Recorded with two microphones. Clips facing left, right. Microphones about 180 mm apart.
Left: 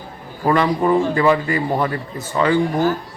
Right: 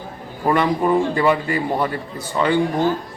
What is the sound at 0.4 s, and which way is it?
Speech, 5° right (ahead or behind).